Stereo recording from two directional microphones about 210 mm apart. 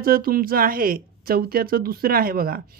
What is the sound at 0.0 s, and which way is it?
A woman's voice, 45° right (ahead or behind).